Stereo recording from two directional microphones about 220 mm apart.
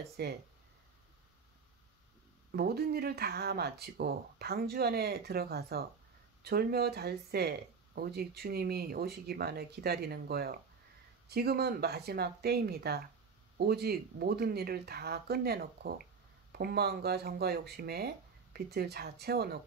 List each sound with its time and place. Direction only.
0.2 s speech: 45° right (ahead or behind)
2.5 s speech: 45° right (ahead or behind)